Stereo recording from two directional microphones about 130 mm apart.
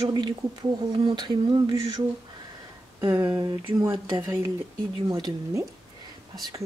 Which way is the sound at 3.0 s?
30° right (ahead or behind).